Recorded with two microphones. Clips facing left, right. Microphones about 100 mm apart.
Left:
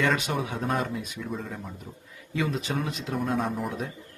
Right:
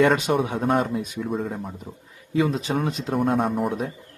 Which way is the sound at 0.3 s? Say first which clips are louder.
Right 6 dB; 40° right (ahead or behind).